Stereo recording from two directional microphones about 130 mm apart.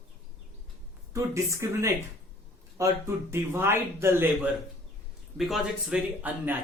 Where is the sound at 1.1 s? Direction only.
20° right (ahead or behind).